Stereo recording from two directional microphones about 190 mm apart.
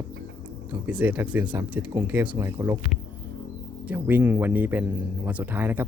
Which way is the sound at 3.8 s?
10° right (ahead or behind).